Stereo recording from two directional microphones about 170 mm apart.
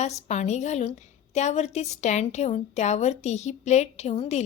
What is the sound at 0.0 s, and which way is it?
A woman's voice, 40° left (ahead or behind).